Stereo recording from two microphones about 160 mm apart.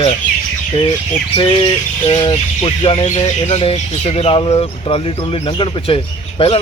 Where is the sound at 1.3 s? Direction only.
30° left (ahead or behind).